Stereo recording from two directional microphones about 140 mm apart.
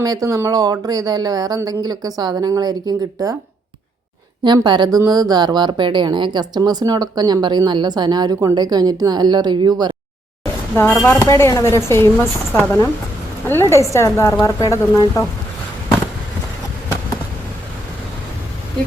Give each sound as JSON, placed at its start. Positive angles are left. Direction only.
{"t": 0.0, "sound": "a woman's voice", "side_deg": -25}
{"t": 4.4, "sound": "a woman's voice", "side_deg": -30}
{"t": 10.8, "sound": "speech", "side_deg": 15}